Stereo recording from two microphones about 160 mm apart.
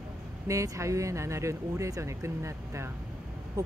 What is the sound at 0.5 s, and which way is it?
Speech, 20° right (ahead or behind).